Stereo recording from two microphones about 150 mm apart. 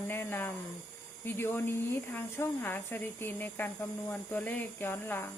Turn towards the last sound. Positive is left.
turn(degrees=15)  # may be behind; listen again after turning